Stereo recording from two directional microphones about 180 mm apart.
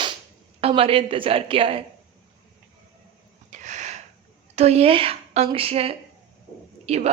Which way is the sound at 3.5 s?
40° right (ahead or behind).